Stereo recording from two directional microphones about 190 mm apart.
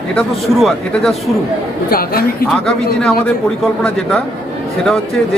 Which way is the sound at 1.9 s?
50° left (ahead or behind).